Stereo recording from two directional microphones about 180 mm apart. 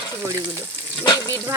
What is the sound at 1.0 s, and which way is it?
Speech, 20° left (ahead or behind).